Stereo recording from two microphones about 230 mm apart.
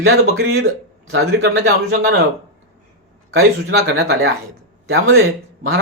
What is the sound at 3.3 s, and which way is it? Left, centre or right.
Speech, right.